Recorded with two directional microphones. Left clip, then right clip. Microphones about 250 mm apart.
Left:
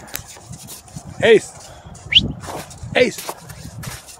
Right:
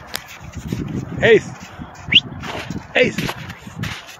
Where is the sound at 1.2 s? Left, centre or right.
Centre.